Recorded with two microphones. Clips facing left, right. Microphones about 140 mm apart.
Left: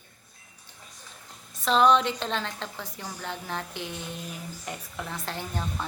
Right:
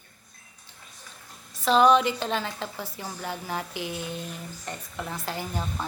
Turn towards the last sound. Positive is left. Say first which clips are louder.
# right 1 dB
turn(degrees=-5)  # may be behind; listen again after turning